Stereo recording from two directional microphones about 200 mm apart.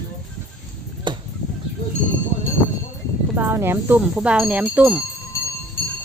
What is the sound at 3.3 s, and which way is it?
Speech, 10° right (ahead or behind).